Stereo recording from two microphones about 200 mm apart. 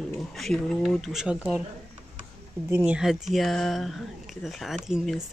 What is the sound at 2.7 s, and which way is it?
Speech, 5° right (ahead or behind).